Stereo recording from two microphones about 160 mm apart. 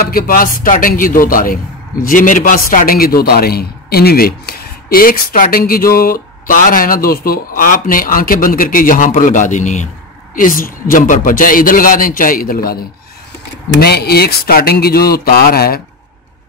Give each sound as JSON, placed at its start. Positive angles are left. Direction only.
{"t": 0.0, "sound": "a man's voice", "side_deg": 65}
{"t": 10.3, "sound": "a man's voice", "side_deg": 60}
{"t": 13.7, "sound": "speech", "side_deg": 80}